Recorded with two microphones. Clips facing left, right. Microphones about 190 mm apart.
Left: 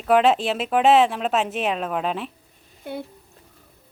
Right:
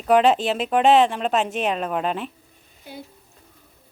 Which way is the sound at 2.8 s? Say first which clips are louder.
Left 7 dB; 60° left (ahead or behind).